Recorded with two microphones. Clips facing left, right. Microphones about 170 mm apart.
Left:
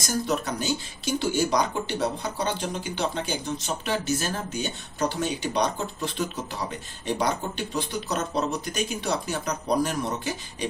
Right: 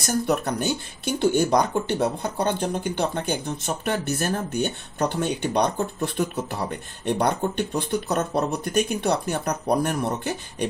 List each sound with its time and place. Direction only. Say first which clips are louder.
0.3 s speech: right 3 dB; 60° right (ahead or behind)